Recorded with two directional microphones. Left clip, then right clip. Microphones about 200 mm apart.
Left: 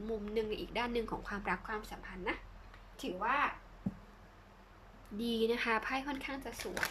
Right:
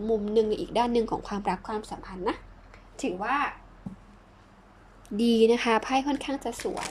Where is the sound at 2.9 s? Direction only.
40° right (ahead or behind).